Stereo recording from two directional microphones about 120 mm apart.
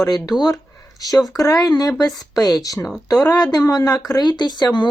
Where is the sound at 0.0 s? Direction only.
35° left (ahead or behind).